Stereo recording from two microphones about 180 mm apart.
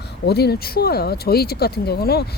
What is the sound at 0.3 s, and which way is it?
Speech, 65° left (ahead or behind).